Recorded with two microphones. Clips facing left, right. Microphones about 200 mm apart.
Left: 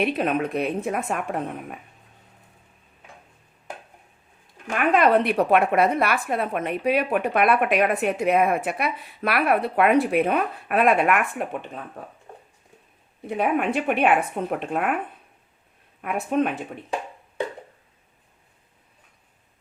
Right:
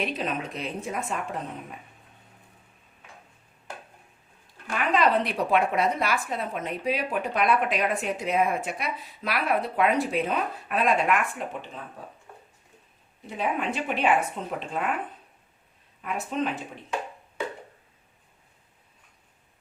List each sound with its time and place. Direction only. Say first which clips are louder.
0.0 s a woman's voice: left 7 dB; 60° left (ahead or behind)
4.7 s a woman's voice: left 5 dB; 55° left (ahead or behind)
13.2 s a woman's voice: left 6 dB; 60° left (ahead or behind)
16.0 s a woman's voice: left 6 dB; 60° left (ahead or behind)